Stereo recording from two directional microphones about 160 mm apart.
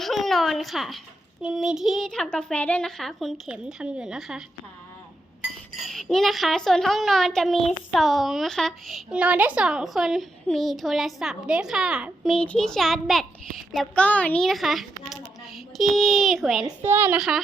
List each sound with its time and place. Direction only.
0.0 s speech: centre (ahead or behind)
5.8 s a child's voice: centre (ahead or behind)
16.6 s a woman's voice: 15° right (ahead or behind)
17.2 s speech: centre (ahead or behind)